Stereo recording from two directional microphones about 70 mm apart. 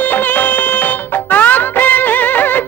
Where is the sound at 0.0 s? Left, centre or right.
Left.